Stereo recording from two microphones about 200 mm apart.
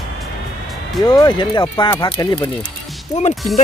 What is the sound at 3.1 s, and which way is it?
Speech, 35° left (ahead or behind).